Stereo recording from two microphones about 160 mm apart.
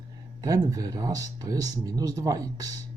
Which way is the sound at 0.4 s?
20° right (ahead or behind).